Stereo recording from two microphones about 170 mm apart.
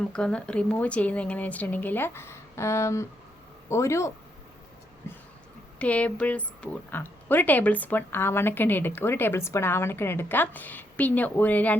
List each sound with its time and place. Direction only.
0.1 s speech: 5° left (ahead or behind)
5.8 s speech: 10° left (ahead or behind)